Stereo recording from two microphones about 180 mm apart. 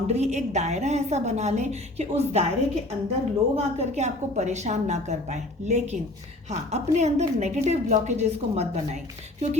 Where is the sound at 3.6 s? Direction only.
35° right (ahead or behind).